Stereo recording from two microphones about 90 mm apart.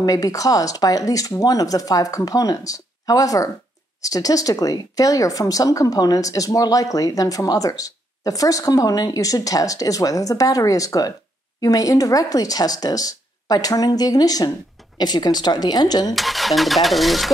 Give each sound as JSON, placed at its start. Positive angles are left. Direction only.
{"t": 0.0, "sound": "speech", "side_deg": 40}
{"t": 16.2, "sound": "speech", "side_deg": 0}